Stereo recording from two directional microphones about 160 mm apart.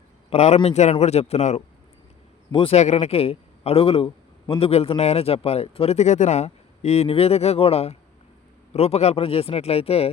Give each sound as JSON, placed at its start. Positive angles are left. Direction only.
{"t": 0.3, "sound": "a man's voice", "side_deg": 40}